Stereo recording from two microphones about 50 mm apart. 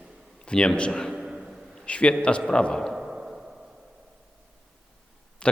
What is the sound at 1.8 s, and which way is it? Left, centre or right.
A man's voice, left.